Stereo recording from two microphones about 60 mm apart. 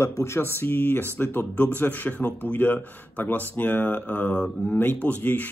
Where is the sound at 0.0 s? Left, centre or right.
Left.